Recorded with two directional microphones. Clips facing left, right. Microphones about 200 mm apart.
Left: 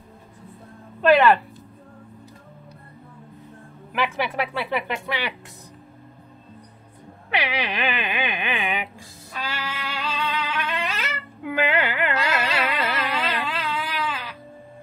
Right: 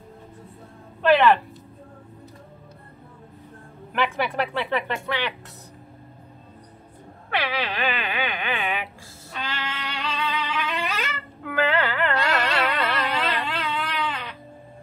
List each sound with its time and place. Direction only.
1.0 s speech: 10° left (ahead or behind)
3.9 s speech: 5° left (ahead or behind)
7.2 s speech: 15° left (ahead or behind)
9.4 s music: 10° left (ahead or behind)
11.4 s a sound: 15° left (ahead or behind)
12.2 s a sound: centre (ahead or behind)